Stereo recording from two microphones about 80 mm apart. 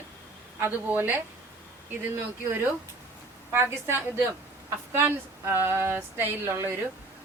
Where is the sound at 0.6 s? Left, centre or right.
Right.